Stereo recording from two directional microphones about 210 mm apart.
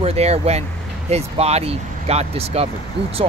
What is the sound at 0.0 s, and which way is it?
Speech, 30° right (ahead or behind).